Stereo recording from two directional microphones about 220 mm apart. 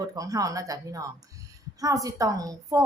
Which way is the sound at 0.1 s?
15° right (ahead or behind).